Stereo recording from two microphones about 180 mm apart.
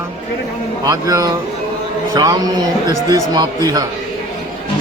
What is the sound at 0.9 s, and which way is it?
A man's voice, 20° right (ahead or behind).